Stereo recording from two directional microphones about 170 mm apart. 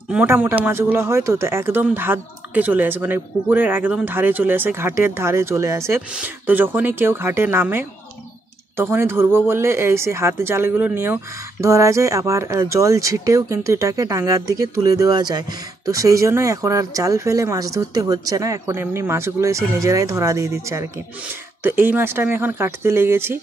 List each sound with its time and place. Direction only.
0.1 s a man's voice: 10° right (ahead or behind)